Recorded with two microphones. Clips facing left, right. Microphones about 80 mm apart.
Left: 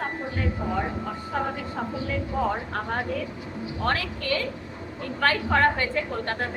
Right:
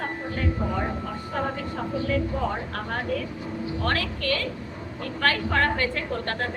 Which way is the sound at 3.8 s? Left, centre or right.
Centre.